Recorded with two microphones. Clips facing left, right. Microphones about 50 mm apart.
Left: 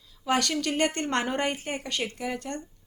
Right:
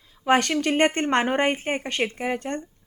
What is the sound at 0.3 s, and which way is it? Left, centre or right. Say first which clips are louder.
A woman's voice: right 6 dB; right.